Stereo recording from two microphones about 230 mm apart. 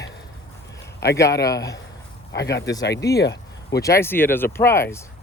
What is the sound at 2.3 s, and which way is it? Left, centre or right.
Speech, left.